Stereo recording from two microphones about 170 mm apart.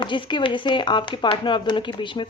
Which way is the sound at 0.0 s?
30° left (ahead or behind).